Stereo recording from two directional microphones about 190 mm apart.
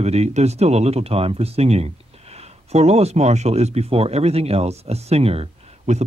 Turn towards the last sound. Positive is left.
turn(degrees=-35)  # may be behind; listen again after turning